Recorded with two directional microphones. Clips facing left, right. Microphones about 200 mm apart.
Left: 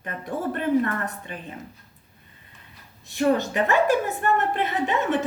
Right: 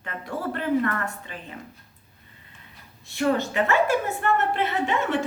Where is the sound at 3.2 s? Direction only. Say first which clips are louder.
Left 2 dB; 20° left (ahead or behind).